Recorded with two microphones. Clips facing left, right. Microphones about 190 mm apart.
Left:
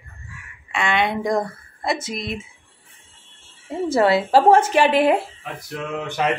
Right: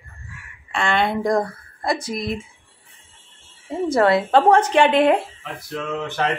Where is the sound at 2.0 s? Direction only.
25° left (ahead or behind).